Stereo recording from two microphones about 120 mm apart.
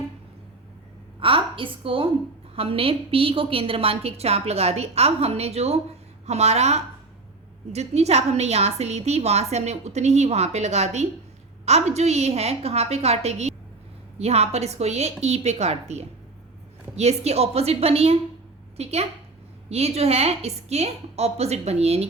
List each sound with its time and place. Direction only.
1.2 s a woman's voice: 45° right (ahead or behind)